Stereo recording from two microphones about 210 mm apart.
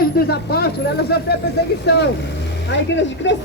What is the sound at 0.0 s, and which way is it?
Speech, 45° left (ahead or behind).